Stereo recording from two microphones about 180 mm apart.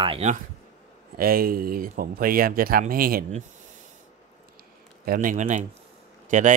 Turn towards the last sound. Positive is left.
turn(degrees=-45)  # may be behind; listen again after turning